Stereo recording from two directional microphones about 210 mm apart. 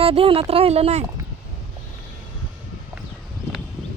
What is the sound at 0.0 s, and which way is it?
Speech, 25° right (ahead or behind).